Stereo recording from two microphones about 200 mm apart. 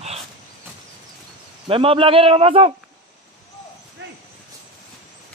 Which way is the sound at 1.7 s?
25° right (ahead or behind).